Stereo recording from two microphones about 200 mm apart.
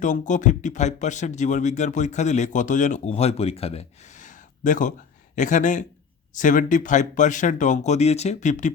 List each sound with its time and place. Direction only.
0.0 s speech: 40° left (ahead or behind)